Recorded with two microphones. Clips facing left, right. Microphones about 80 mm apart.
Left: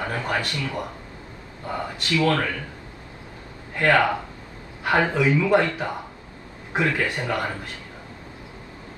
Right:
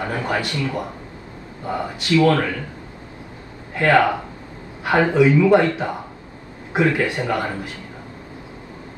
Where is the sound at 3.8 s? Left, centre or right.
Centre.